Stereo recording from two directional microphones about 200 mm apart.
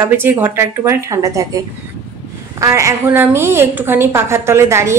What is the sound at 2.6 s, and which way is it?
Speech, 15° right (ahead or behind).